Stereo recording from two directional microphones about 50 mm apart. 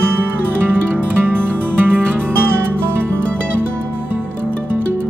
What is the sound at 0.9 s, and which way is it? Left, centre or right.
Music, right.